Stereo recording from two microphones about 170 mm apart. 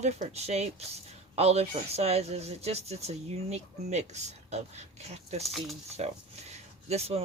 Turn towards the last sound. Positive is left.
turn(degrees=-40)  # may be behind; listen again after turning